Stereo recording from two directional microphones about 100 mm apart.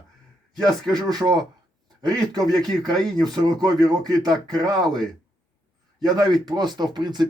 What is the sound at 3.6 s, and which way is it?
Speech, 40° right (ahead or behind).